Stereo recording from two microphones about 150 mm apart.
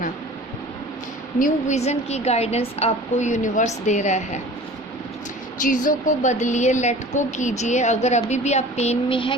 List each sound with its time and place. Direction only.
1.4 s a woman's voice: 55° left (ahead or behind)
5.6 s a woman's voice: 60° left (ahead or behind); by 9.3 s 35° left (ahead or behind)